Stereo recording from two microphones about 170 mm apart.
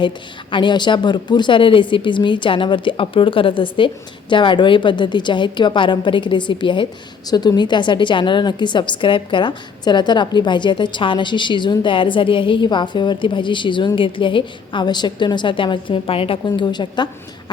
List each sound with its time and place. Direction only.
0.5 s a woman's voice: 25° left (ahead or behind)